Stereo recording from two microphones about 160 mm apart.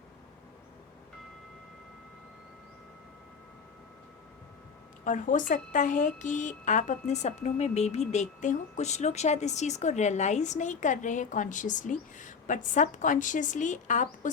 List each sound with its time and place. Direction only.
5.0 s a woman's voice: 55° left (ahead or behind)